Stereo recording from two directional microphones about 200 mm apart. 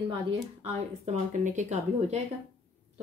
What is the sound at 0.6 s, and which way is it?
A woman's voice, 30° right (ahead or behind).